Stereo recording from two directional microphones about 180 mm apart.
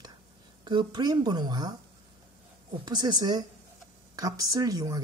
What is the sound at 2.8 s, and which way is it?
Speech, 25° right (ahead or behind).